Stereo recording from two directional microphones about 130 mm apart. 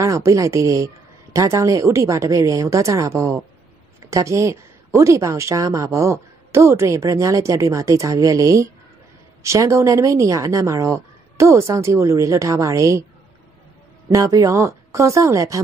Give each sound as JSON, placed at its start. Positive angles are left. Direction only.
{"t": 0.0, "sound": "a woman's voice", "side_deg": -25}
{"t": 14.0, "sound": "a woman's voice", "side_deg": -25}